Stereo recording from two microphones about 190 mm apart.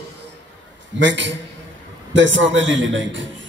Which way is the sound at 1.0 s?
70° right (ahead or behind).